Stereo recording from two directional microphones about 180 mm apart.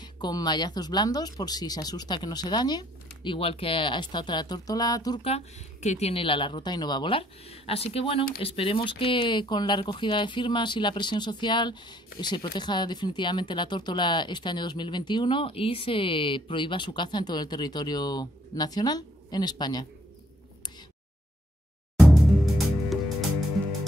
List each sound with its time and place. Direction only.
0.0 s speech: 25° left (ahead or behind)
5.2 s speech: 35° left (ahead or behind)
22.0 s music: centre (ahead or behind)